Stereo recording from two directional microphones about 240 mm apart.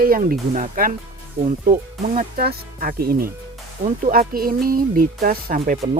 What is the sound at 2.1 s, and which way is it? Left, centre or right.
Speech, right.